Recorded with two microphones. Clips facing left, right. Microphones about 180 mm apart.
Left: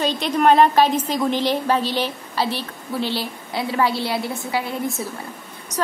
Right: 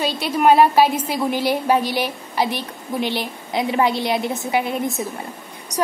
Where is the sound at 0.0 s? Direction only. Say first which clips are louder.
Even; 10° right (ahead or behind).